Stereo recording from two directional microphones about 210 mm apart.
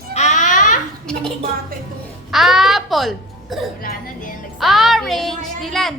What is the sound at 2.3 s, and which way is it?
A child's voice, centre (ahead or behind).